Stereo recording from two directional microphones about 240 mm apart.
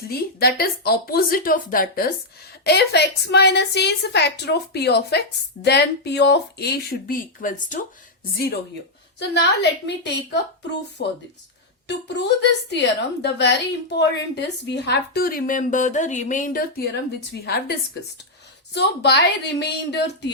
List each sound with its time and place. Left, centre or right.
0.1 s a woman's voice: left
11.9 s a woman's voice: left